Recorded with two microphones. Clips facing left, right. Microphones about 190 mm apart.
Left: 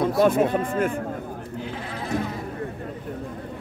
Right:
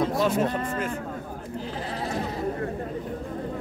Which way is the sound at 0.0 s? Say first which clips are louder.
Left 4 dB; 55° left (ahead or behind).